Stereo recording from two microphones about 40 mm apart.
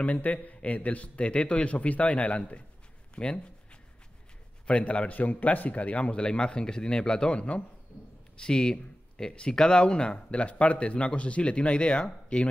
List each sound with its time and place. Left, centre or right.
0.0 s a man's voice: left
4.6 s speech: left